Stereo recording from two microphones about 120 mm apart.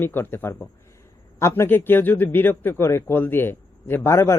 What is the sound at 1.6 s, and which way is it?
Speech, 15° left (ahead or behind).